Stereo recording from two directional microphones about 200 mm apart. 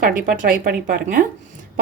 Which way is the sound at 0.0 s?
45° right (ahead or behind).